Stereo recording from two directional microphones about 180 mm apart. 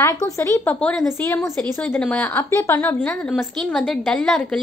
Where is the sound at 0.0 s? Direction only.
20° left (ahead or behind).